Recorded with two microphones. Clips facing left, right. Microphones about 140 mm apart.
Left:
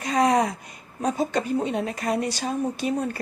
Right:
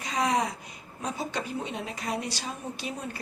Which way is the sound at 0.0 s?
50° left (ahead or behind).